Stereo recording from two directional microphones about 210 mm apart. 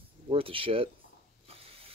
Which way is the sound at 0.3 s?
25° right (ahead or behind).